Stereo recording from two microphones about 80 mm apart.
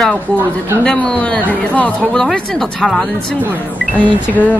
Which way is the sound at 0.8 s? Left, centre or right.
Centre.